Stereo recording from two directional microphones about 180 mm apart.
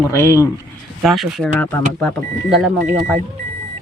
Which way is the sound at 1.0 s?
Centre (ahead or behind).